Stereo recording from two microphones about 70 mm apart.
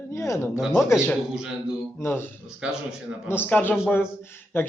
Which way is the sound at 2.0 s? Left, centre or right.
Left.